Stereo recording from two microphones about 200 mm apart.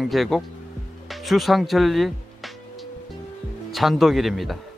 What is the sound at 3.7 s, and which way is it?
Speech, centre (ahead or behind).